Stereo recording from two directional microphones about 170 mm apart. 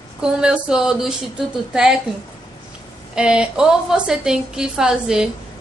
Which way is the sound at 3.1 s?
5° right (ahead or behind).